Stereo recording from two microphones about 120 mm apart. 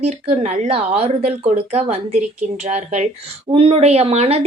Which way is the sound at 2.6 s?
75° right (ahead or behind).